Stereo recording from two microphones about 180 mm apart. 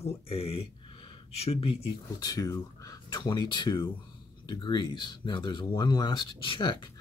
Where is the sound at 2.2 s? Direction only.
20° left (ahead or behind).